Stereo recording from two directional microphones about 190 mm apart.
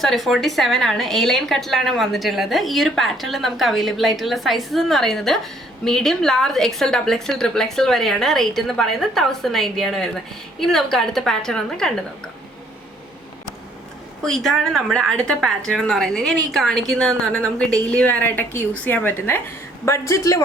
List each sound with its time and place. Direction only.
0.0 s a woman's voice: centre (ahead or behind)
14.2 s a woman's voice: centre (ahead or behind)